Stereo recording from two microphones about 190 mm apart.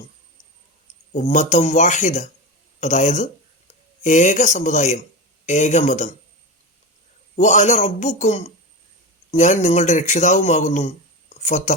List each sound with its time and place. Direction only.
1.1 s a man's voice: 40° left (ahead or behind)
7.3 s a man's voice: 40° left (ahead or behind)